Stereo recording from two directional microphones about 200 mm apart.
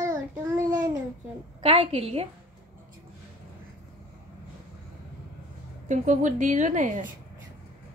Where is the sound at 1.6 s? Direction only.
30° right (ahead or behind).